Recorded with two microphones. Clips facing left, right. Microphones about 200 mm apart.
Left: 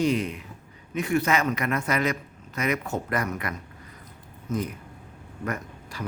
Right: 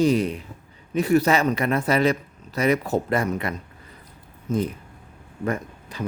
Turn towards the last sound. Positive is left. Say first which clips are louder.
# right 5 dB
turn(degrees=-25)  # may be behind; listen again after turning